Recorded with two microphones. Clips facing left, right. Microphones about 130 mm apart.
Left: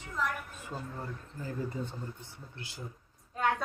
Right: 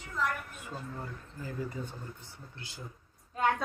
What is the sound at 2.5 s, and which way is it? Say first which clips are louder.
Speech: left 2 dB; 25° right (ahead or behind).